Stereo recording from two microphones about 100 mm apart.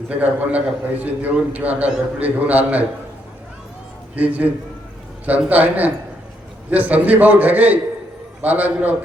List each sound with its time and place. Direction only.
0.1 s a man's voice: 15° right (ahead or behind)
4.1 s a man's voice: 15° right (ahead or behind)